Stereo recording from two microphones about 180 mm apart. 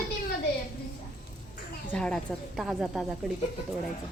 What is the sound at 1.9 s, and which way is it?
Speech, 5° left (ahead or behind).